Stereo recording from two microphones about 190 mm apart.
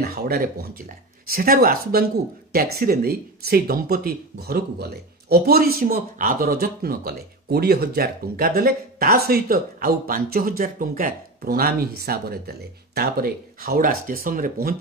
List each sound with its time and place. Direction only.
0.0 s speech: 55° right (ahead or behind)